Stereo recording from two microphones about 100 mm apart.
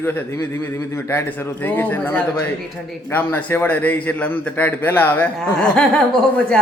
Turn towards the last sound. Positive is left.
turn(degrees=10)  # may be behind; listen again after turning